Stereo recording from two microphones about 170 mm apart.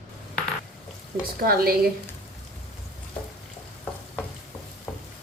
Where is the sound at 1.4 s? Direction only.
60° right (ahead or behind).